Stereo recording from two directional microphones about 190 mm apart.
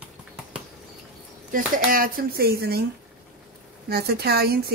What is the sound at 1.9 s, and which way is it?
Speech, 50° right (ahead or behind).